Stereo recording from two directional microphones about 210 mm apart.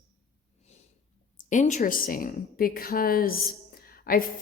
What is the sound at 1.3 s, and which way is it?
A woman's voice, 35° left (ahead or behind).